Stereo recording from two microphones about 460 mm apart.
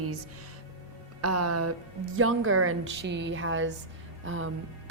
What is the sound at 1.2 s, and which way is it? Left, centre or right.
A woman's voice, right.